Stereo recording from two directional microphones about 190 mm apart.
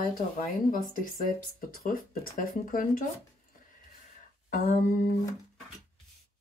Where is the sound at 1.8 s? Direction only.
45° left (ahead or behind).